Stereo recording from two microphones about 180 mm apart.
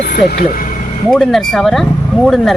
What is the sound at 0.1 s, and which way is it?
Speech, 55° left (ahead or behind).